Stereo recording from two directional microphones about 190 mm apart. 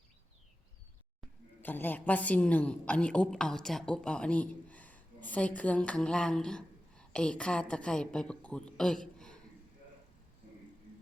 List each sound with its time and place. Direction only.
1.6 s a woman's voice: 10° left (ahead or behind)